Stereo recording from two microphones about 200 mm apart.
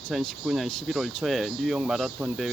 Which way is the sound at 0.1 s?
Centre (ahead or behind).